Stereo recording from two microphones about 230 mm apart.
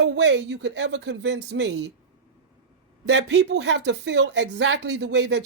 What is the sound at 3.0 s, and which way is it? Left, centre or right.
Speech, right.